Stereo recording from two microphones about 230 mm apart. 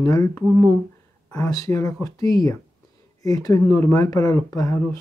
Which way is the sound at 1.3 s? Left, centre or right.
Centre.